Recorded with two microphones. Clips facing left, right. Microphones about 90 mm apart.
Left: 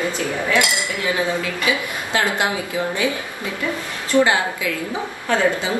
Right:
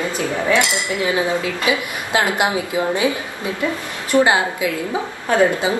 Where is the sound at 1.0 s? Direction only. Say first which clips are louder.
Right 1 dB; 20° right (ahead or behind).